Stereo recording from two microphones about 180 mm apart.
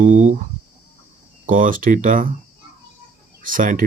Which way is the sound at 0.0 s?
45° right (ahead or behind).